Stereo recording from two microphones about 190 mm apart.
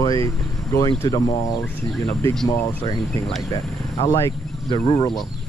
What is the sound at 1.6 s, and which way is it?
Speech, 5° left (ahead or behind).